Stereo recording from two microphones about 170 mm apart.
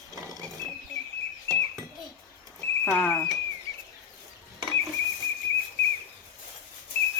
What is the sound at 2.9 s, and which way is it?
Speech, 5° left (ahead or behind).